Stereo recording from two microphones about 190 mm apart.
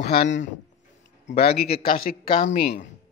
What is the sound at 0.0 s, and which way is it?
Speech, 60° left (ahead or behind).